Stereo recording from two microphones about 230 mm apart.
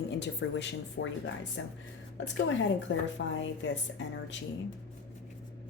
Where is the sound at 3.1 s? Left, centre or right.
Left.